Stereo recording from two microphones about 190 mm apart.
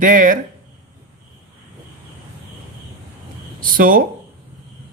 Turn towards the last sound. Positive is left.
turn(degrees=-45)  # may be behind; listen again after turning